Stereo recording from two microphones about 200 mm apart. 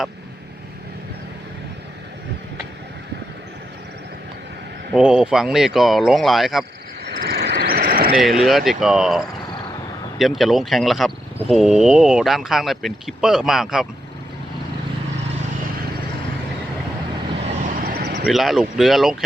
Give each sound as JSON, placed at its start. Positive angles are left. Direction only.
{"t": 4.9, "sound": "speech", "side_deg": -5}
{"t": 7.0, "sound": "vehicle", "side_deg": -50}
{"t": 8.2, "sound": "speech", "side_deg": 0}
{"t": 17.4, "sound": "a sound", "side_deg": -35}
{"t": 18.3, "sound": "speech", "side_deg": 0}